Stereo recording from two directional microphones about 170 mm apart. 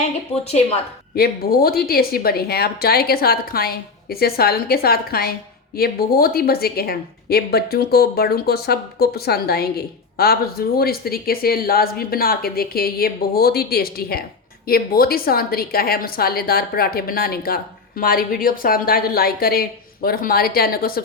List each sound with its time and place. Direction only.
0.4 s a woman's voice: 40° left (ahead or behind)
1.1 s a woman's voice: 60° left (ahead or behind)